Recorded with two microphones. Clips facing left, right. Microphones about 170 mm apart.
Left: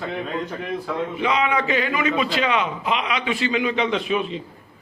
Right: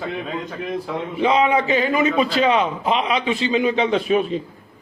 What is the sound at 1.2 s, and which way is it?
A man's voice, 30° right (ahead or behind).